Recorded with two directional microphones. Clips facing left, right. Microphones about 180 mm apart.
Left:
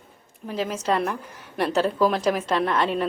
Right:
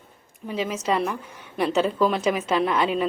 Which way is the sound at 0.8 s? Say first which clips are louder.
Left 1 dB; centre (ahead or behind).